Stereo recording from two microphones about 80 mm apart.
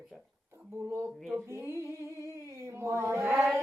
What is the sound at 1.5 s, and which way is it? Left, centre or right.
Humming, right.